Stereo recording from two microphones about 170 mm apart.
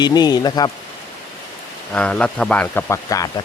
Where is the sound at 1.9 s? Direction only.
5° left (ahead or behind).